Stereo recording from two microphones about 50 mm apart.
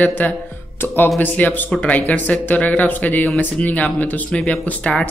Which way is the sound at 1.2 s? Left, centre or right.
Left.